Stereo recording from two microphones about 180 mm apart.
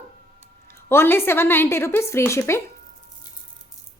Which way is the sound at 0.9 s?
10° left (ahead or behind).